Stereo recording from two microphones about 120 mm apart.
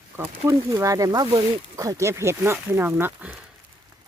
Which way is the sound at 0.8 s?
25° right (ahead or behind).